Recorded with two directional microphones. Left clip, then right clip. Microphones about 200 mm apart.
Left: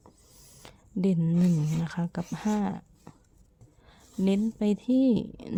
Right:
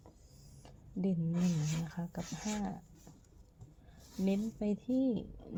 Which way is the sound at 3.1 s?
40° left (ahead or behind).